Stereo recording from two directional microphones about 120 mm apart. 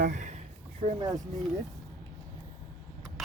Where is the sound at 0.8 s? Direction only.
75° right (ahead or behind).